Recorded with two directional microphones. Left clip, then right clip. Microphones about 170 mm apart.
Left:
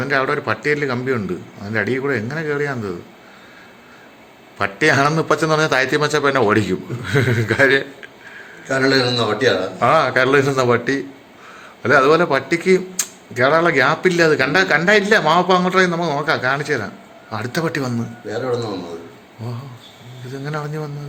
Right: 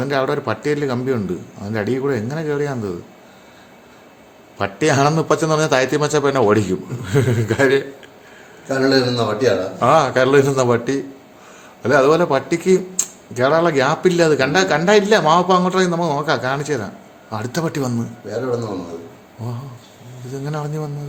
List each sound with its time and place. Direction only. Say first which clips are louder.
0.0 s speech: left 1 dB; 25° right (ahead or behind)
4.5 s a man's voice: left 2 dB; 20° right (ahead or behind)
8.6 s a man's voice: even; 50° right (ahead or behind)
9.8 s speech: right 1 dB; 20° right (ahead or behind)
20.2 s speech: even; 20° right (ahead or behind)